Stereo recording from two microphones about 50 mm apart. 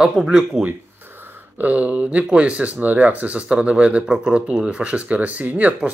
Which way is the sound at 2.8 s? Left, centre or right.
Right.